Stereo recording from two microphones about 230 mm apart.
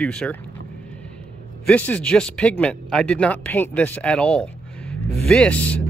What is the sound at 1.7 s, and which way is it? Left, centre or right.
Speech, centre.